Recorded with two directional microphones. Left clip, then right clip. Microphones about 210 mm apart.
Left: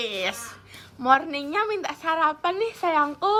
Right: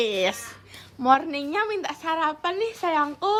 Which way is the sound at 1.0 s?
25° right (ahead or behind).